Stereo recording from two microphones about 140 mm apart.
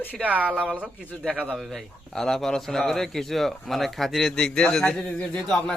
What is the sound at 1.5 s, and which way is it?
Speech, centre (ahead or behind).